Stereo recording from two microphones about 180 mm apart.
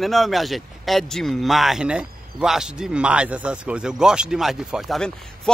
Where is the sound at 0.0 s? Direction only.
Centre (ahead or behind).